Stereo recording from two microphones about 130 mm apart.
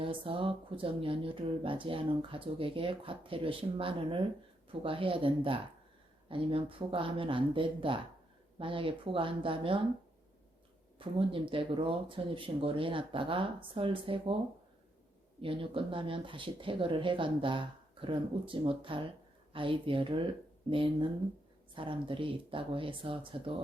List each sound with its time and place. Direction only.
0.0 s speech: 45° right (ahead or behind)
10.9 s speech: 40° right (ahead or behind)
15.4 s speech: 40° right (ahead or behind)